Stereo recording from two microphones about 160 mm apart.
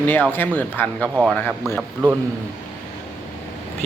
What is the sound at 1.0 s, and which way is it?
Speech, 10° right (ahead or behind).